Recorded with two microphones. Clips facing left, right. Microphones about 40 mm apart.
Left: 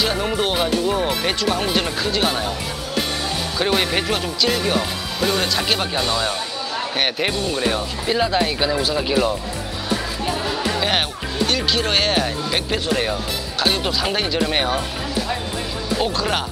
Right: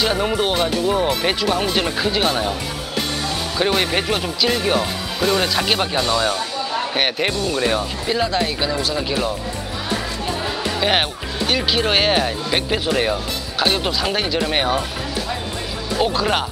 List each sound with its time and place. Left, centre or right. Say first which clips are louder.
0.0 s speech: right 2 dB; centre
3.5 s speech: right 1 dB; centre
8.1 s speech: left 1 dB; centre
10.2 s music: left 1 dB; centre
10.9 s speech: right 2 dB; centre
16.0 s speech: right 4 dB; centre